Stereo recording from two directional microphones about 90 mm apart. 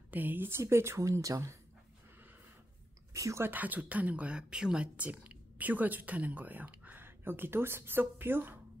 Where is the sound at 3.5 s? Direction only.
20° right (ahead or behind).